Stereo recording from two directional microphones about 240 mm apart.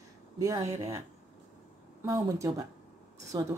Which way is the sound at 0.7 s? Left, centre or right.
Centre.